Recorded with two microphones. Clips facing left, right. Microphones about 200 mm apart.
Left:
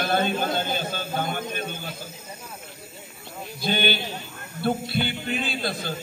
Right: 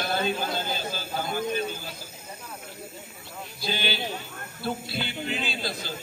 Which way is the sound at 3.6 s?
55° left (ahead or behind).